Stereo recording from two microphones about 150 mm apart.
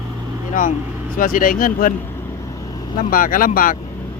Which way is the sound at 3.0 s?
70° left (ahead or behind).